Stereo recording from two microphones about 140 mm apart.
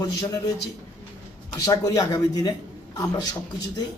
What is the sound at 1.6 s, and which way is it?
A man's voice, 25° left (ahead or behind).